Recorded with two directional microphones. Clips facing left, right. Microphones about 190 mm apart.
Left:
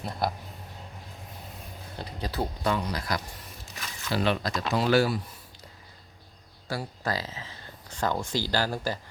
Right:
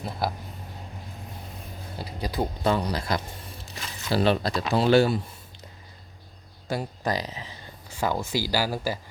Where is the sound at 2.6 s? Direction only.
30° right (ahead or behind).